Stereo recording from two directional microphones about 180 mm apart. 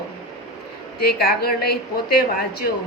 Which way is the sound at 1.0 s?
60° left (ahead or behind).